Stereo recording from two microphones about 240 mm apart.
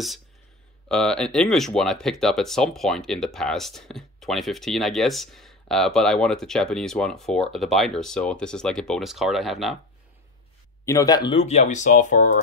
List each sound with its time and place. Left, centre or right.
0.8 s speech: centre
10.9 s speech: centre; by 12.3 s left